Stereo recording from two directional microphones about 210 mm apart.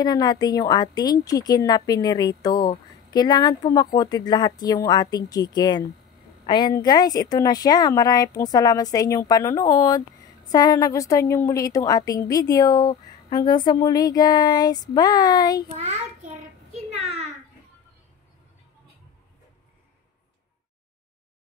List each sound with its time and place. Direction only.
0.0 s a woman's voice: 20° left (ahead or behind)
15.8 s child singing: 35° right (ahead or behind)